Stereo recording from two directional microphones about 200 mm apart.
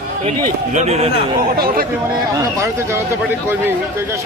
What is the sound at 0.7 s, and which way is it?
Speech, 30° right (ahead or behind).